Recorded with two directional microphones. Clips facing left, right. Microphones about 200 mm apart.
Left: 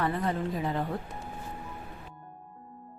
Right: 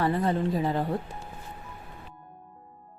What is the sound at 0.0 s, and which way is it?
Speech, 30° right (ahead or behind).